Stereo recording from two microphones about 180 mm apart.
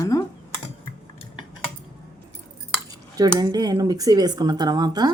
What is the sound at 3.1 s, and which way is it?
Speech, 20° right (ahead or behind).